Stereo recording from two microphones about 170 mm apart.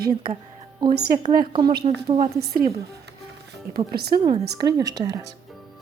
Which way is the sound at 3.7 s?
65° right (ahead or behind).